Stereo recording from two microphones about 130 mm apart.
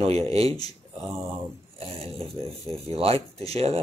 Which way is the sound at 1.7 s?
45° right (ahead or behind).